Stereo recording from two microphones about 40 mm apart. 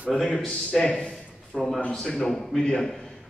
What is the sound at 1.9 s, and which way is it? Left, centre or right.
Speech, centre.